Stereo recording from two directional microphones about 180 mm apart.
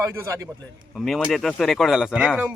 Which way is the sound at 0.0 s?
15° right (ahead or behind).